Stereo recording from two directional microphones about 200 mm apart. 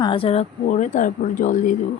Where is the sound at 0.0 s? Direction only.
25° left (ahead or behind).